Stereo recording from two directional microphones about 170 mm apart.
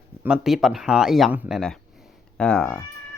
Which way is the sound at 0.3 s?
Centre (ahead or behind).